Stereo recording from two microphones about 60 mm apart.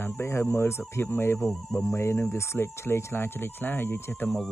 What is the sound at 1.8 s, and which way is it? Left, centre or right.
Speech, left.